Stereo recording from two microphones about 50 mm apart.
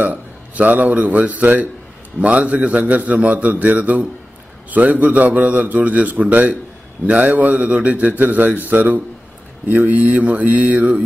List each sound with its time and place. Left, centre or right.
0.0 s a man's voice: right